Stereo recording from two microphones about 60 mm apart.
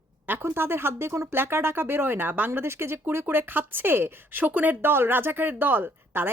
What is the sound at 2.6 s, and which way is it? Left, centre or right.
Speech, right.